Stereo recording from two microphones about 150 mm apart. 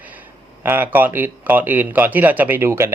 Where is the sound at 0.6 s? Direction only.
15° right (ahead or behind).